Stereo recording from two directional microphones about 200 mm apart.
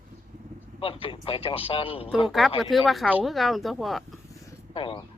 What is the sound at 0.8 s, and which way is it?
Speech, 25° left (ahead or behind).